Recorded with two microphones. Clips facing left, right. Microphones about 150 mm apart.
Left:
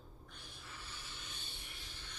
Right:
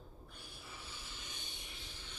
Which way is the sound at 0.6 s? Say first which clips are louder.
Even; 10° right (ahead or behind).